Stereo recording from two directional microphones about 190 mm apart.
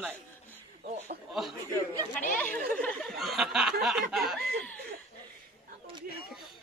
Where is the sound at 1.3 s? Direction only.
Centre (ahead or behind).